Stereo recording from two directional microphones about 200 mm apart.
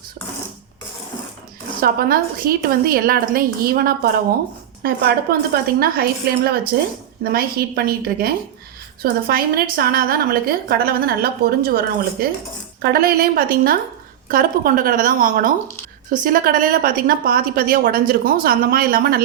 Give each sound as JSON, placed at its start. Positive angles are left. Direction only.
{"t": 1.8, "sound": "a woman's voice", "side_deg": -50}